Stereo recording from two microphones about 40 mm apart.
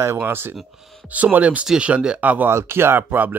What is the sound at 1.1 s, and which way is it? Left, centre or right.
Speech, right.